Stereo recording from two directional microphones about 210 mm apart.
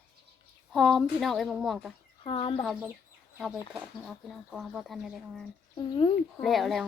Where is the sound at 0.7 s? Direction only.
Centre (ahead or behind).